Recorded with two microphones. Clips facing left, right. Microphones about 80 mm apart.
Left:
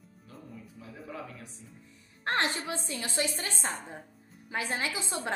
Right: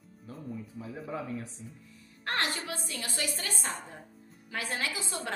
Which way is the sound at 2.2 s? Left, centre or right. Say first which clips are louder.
Left 2 dB; left.